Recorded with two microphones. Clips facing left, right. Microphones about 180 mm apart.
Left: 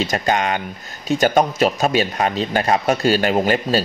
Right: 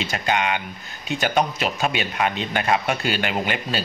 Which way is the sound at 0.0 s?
40° left (ahead or behind).